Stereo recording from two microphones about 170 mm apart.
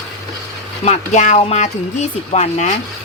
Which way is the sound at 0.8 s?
45° left (ahead or behind).